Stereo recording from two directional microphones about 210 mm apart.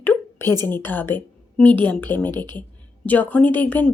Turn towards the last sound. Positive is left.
turn(degrees=10)  # may be behind; listen again after turning